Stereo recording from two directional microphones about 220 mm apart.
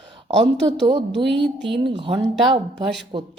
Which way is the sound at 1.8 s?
25° right (ahead or behind).